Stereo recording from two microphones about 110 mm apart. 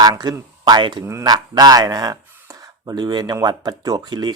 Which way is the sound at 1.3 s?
40° right (ahead or behind).